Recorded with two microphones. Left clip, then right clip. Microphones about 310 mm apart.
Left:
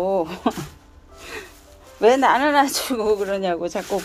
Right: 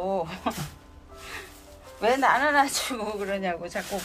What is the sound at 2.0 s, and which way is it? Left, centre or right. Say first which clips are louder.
Speech: left 6 dB; left.